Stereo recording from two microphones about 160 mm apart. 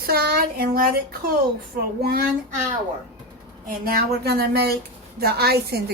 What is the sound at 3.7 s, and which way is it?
Speech, 70° right (ahead or behind).